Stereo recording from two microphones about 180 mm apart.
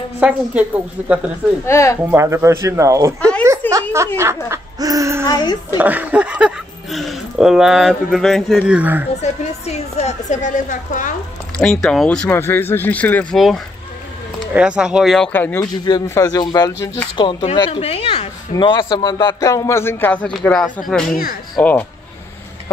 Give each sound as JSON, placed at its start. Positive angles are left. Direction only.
{"t": 0.2, "sound": "speech", "side_deg": -10}
{"t": 1.7, "sound": "speech", "side_deg": 15}
{"t": 2.0, "sound": "speech", "side_deg": -15}
{"t": 3.2, "sound": "chuckle", "side_deg": 5}
{"t": 4.5, "sound": "owl", "side_deg": -20}
{"t": 5.2, "sound": "speech", "side_deg": 20}
{"t": 5.8, "sound": "speech", "side_deg": -10}
{"t": 9.2, "sound": "a woman's voice", "side_deg": 35}
{"t": 11.5, "sound": "speech", "side_deg": 5}
{"t": 15.8, "sound": "speech", "side_deg": 20}
{"t": 21.1, "sound": "speech", "side_deg": 55}
{"t": 21.5, "sound": "speech", "side_deg": 10}